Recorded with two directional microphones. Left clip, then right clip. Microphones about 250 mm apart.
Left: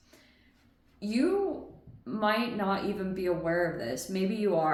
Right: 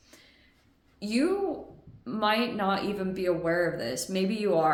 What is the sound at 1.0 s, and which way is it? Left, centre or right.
A woman's voice, right.